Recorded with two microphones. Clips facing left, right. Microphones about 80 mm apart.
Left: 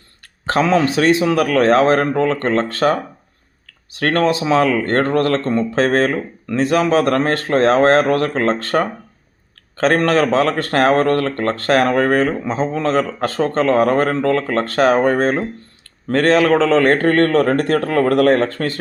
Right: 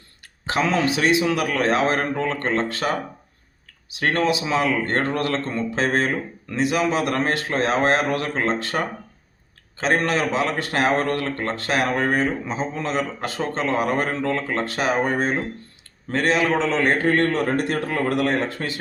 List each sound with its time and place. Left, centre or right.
0.4 s a sound: left
0.9 s a man's voice: left
2.0 s a man's voice: left
2.7 s a man's voice: left
4.0 s a man's voice: left
4.3 s a man's voice: left
16.0 s a man's voice: left